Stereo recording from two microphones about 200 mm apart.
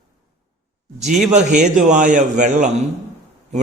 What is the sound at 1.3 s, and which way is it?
A man's voice, 35° right (ahead or behind).